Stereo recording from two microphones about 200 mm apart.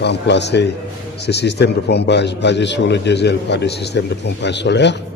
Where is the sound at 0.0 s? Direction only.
60° left (ahead or behind).